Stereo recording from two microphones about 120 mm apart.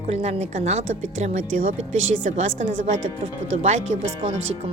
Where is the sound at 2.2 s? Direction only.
90° right.